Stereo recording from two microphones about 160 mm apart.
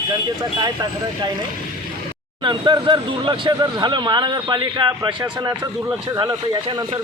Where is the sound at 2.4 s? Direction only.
30° right (ahead or behind).